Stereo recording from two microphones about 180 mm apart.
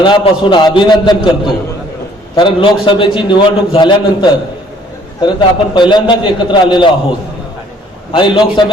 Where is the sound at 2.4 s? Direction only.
30° left (ahead or behind).